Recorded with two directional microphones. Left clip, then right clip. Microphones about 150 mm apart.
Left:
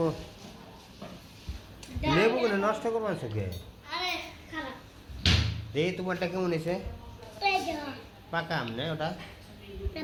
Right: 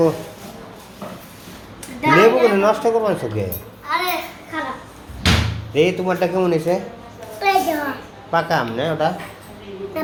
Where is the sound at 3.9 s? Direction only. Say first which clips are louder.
Right 12 dB; 80° right.